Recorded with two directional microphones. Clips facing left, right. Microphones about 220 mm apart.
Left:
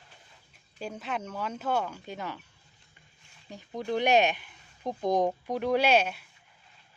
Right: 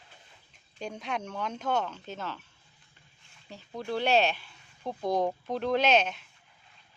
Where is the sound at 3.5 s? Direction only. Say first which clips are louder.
Left 2 dB; 15° left (ahead or behind).